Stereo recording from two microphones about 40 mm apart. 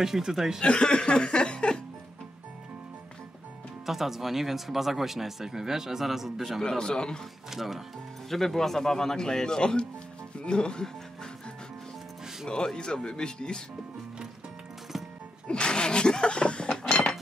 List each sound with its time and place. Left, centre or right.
0.0 s speech: centre
0.6 s speech: left
3.8 s speech: centre
6.8 s speech: centre
7.5 s speech: centre
8.3 s speech: centre
12.4 s speech: centre
15.4 s sneeze: left
16.7 s cutlery: centre